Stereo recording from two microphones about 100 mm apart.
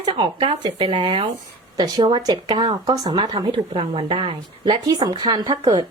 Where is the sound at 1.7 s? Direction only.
45° right (ahead or behind).